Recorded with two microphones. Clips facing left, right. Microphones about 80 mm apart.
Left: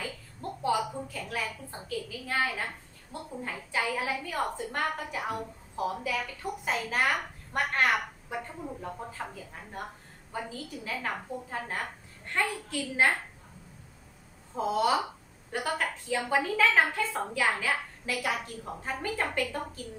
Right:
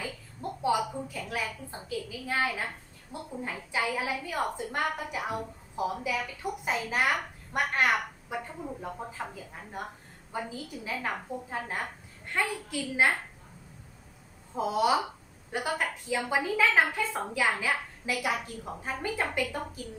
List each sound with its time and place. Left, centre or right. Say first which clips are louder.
0.6 s a sound: right 1 dB; centre
1.0 s a woman's voice: right 1 dB; centre
14.5 s a woman's voice: right 1 dB; centre